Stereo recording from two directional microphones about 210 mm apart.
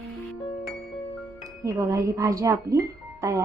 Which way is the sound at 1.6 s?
15° right (ahead or behind).